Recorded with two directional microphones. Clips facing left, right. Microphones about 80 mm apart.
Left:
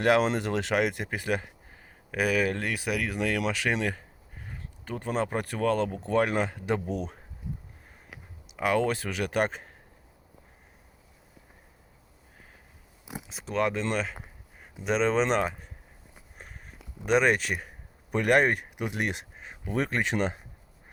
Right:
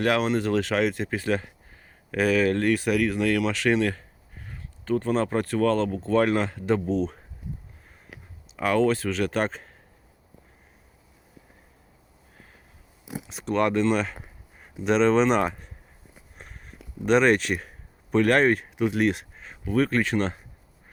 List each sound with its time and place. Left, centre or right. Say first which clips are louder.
0.0 s speech: even; left
8.5 s speech: right 4 dB; centre
13.2 s speech: right 4 dB; centre
16.4 s a sound: right 2 dB; centre
18.1 s speech: right 3 dB; centre